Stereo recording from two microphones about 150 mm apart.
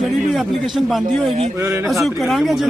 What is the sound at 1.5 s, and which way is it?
Speech, 15° right (ahead or behind).